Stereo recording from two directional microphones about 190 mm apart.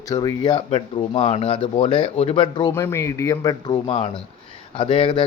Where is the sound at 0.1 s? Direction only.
20° left (ahead or behind).